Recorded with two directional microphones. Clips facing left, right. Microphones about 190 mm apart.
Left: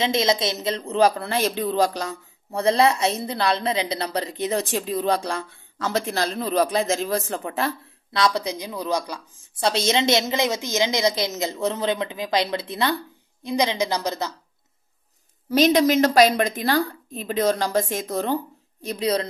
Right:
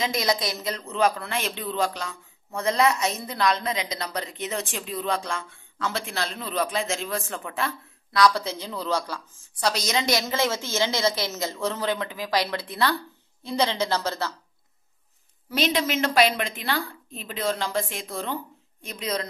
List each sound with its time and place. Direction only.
0.0 s speech: 25° left (ahead or behind)
8.1 s a woman's voice: 20° left (ahead or behind)
9.7 s a woman's voice: 25° left (ahead or behind)
15.5 s speech: 40° left (ahead or behind)